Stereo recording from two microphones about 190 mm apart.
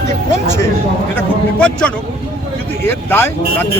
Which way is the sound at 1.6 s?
5° left (ahead or behind).